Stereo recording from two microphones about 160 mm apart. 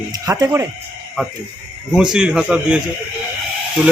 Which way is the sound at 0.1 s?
20° right (ahead or behind).